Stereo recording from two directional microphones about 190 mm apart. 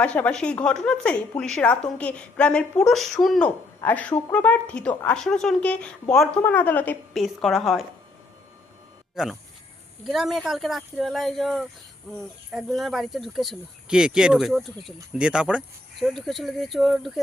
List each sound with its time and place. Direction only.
0.0 s a woman's voice: 5° left (ahead or behind)
9.2 s a woman's voice: 5° right (ahead or behind)